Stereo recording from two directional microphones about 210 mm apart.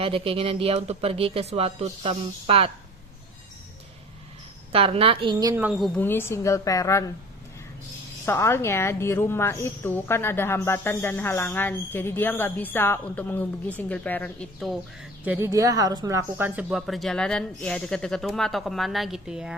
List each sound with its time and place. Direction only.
0.0 s speech: 25° right (ahead or behind)
4.7 s speech: 25° right (ahead or behind); by 7.0 s 15° left (ahead or behind)
8.2 s a woman's voice: 10° left (ahead or behind)
15.2 s speech: 10° right (ahead or behind)